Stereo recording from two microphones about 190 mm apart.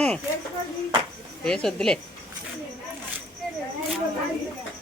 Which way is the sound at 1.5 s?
5° left (ahead or behind).